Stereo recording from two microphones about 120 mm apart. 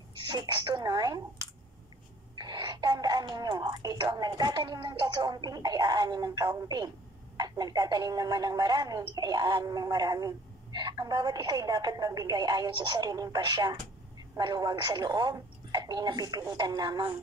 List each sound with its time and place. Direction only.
0.3 s a woman's voice: 40° right (ahead or behind)
2.3 s a woman's voice: 35° right (ahead or behind)